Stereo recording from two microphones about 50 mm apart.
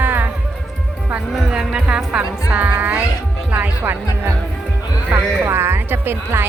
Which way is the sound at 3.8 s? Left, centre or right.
Right.